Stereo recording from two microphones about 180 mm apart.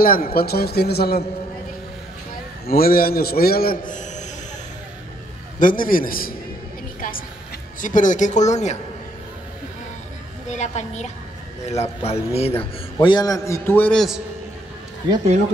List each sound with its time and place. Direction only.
0.0 s a man's voice: 55° left (ahead or behind)
2.6 s a man's voice: 55° left (ahead or behind)
5.6 s speech: 50° left (ahead or behind)
7.0 s a sound: 50° left (ahead or behind)
7.8 s speech: 45° left (ahead or behind)
10.5 s a woman's voice: 40° left (ahead or behind)
13.0 s a man's voice: 25° left (ahead or behind); by 14.2 s centre (ahead or behind)